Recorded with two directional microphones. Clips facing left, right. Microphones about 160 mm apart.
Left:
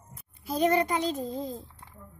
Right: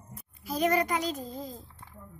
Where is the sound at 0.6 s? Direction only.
25° left (ahead or behind).